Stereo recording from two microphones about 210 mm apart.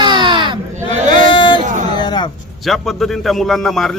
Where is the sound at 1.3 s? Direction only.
25° left (ahead or behind).